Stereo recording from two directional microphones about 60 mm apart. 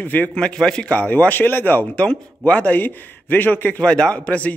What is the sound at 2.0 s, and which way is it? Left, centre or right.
Speech, left.